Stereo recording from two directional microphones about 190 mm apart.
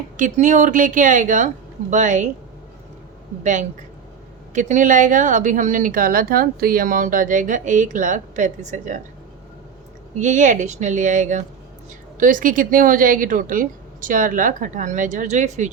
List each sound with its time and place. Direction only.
0.2 s speech: 40° right (ahead or behind)
3.4 s speech: 40° right (ahead or behind)
10.2 s speech: 40° right (ahead or behind)